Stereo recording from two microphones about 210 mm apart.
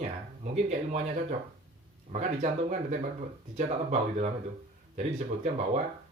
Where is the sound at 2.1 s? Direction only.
35° right (ahead or behind).